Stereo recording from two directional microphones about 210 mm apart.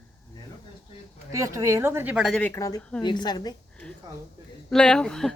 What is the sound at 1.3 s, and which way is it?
A woman's voice, 15° right (ahead or behind).